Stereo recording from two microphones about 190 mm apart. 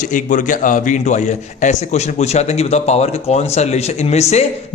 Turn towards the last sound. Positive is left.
turn(degrees=35)  # may be behind; listen again after turning